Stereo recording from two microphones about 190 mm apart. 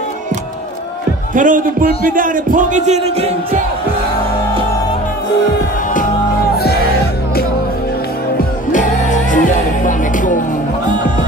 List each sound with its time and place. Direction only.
1.3 s a man's voice: 45° right (ahead or behind)
8.7 s music: 40° left (ahead or behind)